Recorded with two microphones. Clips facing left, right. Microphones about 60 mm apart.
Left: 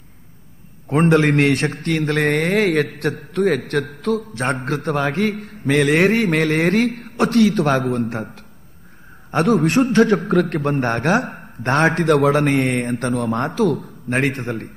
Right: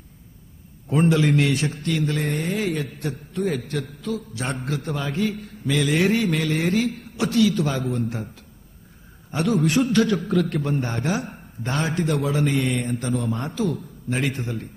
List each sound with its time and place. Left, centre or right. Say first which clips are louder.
0.8 s a man's voice: left 4 dB; left
9.3 s a man's voice: left 5 dB; left